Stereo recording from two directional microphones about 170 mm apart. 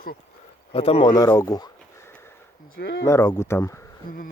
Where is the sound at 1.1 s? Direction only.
20° left (ahead or behind).